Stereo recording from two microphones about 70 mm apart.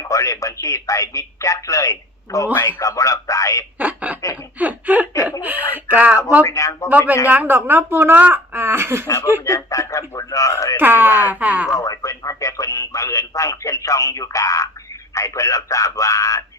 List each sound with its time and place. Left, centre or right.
0.0 s speech: left
2.6 s a man's voice: left
2.9 s speech: left
3.8 s speech: right
5.1 s speech: left
5.4 s speech: right
6.4 s speech: left
7.3 s speech: right
9.4 s speech: left
10.8 s speech: right
11.7 s speech: left